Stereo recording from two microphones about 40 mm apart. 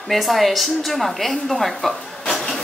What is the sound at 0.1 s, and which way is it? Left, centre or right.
A woman's voice, centre.